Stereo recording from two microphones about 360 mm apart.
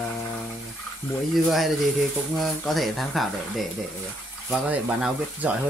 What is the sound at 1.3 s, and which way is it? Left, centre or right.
Speech, centre.